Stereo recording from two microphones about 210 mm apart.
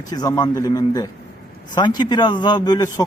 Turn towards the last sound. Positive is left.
turn(degrees=20)  # may be behind; listen again after turning